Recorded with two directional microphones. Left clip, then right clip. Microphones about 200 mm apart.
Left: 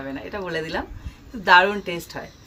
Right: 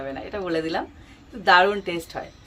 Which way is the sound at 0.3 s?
20° right (ahead or behind).